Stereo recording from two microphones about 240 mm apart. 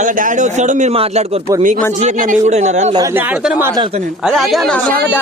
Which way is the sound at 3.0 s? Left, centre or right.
Centre.